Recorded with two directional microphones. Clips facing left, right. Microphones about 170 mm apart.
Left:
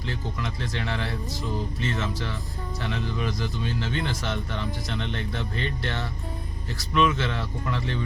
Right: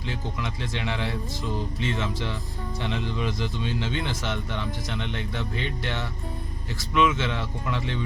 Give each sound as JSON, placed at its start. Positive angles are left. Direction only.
{"t": 0.7, "sound": "speech", "side_deg": -15}